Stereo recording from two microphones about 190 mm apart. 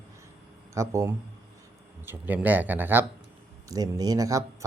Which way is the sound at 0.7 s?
15° right (ahead or behind).